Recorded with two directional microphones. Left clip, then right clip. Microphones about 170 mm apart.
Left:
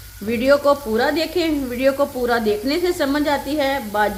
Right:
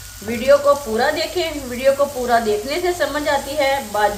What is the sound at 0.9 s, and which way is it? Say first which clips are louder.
Sizzle: even; 65° left (ahead or behind).